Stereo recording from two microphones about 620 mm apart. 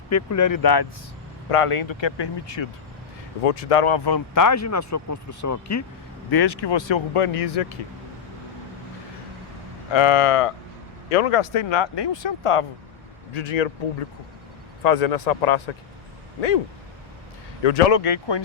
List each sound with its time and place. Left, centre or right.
0.1 s speech: left
1.5 s speech: left
3.4 s speech: left
6.3 s speech: left
9.9 s speech: left
13.3 s speech: left
14.8 s speech: left
17.6 s speech: left